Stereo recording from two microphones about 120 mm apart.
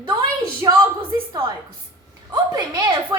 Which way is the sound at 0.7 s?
40° right (ahead or behind).